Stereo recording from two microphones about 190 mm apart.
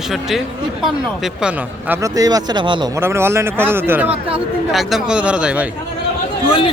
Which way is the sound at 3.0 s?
15° right (ahead or behind).